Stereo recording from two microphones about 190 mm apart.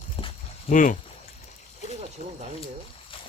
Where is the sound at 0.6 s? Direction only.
45° left (ahead or behind).